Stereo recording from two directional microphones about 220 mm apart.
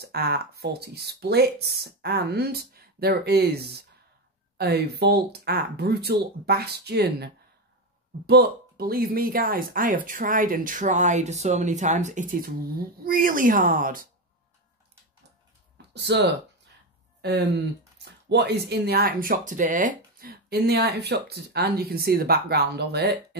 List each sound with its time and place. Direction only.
0.0 s speech: 45° right (ahead or behind)
8.3 s speech: 45° right (ahead or behind)
15.9 s speech: 50° right (ahead or behind)